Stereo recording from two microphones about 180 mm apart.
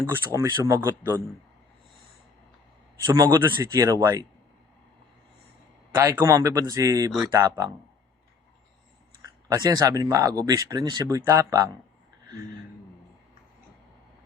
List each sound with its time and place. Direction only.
0.0 s a man's voice: 10° right (ahead or behind)
3.0 s a man's voice: 20° right (ahead or behind)
6.0 s a man's voice: 15° right (ahead or behind)
9.5 s speech: 20° right (ahead or behind)